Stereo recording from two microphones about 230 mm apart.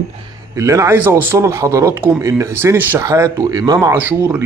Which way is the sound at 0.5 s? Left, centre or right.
Centre.